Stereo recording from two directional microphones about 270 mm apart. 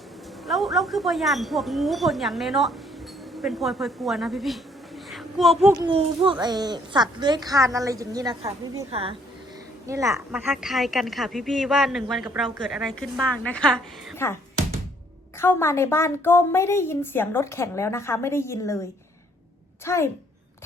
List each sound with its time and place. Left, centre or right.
0.4 s speech: centre
5.1 s a sound: centre
5.7 s a child's voice: centre
15.4 s a woman's voice: centre
19.8 s a woman's voice: centre